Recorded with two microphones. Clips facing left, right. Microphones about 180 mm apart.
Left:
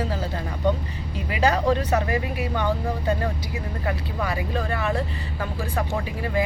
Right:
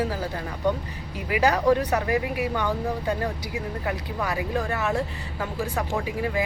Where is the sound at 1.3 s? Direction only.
10° right (ahead or behind).